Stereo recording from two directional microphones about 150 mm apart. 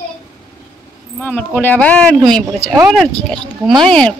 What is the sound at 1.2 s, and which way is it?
A woman's voice, 10° left (ahead or behind).